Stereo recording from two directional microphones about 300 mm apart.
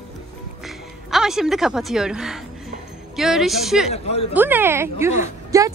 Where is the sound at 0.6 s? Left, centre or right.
Centre.